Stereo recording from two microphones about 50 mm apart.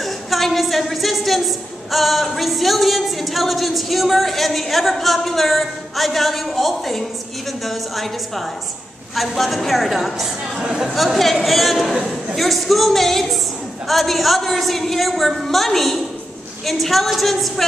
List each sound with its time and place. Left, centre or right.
0.0 s a woman's voice: centre
10.6 s speech: centre
11.1 s a woman's voice: centre